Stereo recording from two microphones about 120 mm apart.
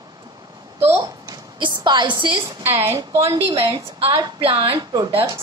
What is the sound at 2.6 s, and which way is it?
Speech, 20° right (ahead or behind).